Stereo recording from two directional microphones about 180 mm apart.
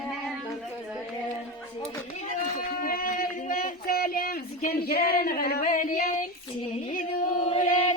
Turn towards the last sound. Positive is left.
turn(degrees=45)  # may be behind; listen again after turning